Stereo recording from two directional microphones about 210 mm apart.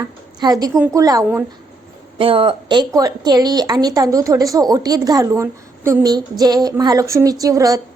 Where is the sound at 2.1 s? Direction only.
25° right (ahead or behind).